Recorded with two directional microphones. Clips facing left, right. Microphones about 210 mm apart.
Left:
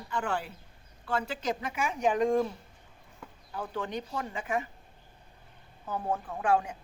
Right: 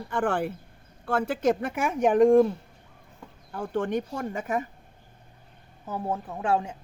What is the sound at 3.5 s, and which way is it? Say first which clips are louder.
Speech: right 7 dB; 50° right (ahead or behind).